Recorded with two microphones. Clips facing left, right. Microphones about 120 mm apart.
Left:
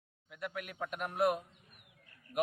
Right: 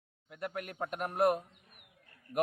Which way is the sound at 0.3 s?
45° right (ahead or behind).